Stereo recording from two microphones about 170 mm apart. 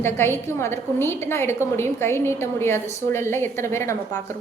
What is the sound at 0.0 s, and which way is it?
A woman's voice, 15° left (ahead or behind).